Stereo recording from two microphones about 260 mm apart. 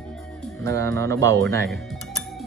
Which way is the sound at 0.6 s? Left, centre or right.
Centre.